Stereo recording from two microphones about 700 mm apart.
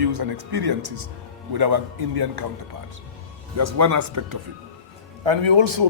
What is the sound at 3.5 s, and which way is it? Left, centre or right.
Speech, right.